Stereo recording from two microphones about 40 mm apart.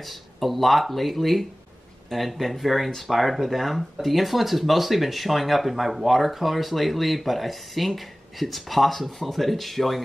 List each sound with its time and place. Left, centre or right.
0.0 s speech: centre